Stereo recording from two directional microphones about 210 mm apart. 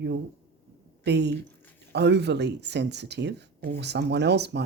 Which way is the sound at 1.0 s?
55° right (ahead or behind).